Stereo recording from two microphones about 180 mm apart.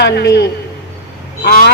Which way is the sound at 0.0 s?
70° left (ahead or behind).